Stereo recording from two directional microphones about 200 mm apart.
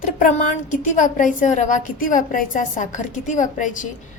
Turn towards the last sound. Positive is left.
turn(degrees=40)  # may be behind; listen again after turning